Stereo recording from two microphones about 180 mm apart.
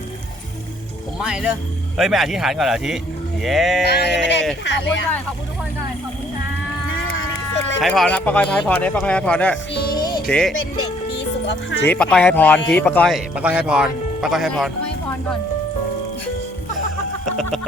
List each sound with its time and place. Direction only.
1.2 s speech: 5° right (ahead or behind)
3.8 s a sound: 65° left (ahead or behind)
7.8 s speech: centre (ahead or behind)
10.0 s music: 20° left (ahead or behind)
10.2 s speech: 5° left (ahead or behind)
11.2 s music: 75° left (ahead or behind)
11.9 s speech: 5° left (ahead or behind)